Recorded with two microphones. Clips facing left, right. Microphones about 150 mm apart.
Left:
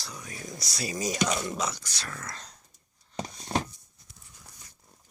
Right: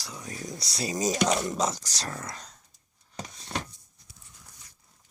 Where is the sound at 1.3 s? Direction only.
40° right (ahead or behind).